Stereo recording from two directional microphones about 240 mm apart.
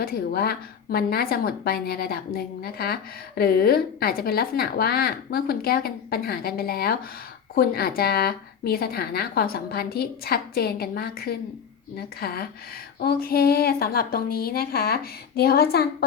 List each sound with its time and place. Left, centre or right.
0.0 s a woman's voice: left